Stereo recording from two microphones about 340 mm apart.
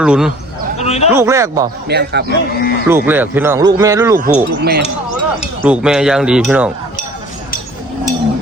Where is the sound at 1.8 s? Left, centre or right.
Right.